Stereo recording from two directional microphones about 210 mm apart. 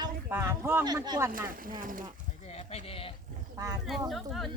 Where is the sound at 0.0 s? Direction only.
10° right (ahead or behind).